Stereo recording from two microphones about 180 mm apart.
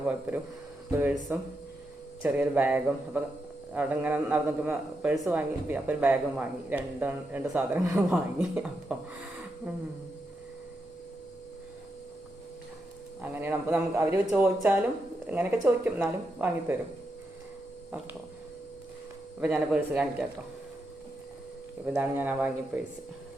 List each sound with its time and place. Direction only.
0.1 s a man's voice: 10° right (ahead or behind)
13.2 s a man's voice: 10° right (ahead or behind)
19.4 s a man's voice: 5° right (ahead or behind)
21.9 s a man's voice: 10° right (ahead or behind)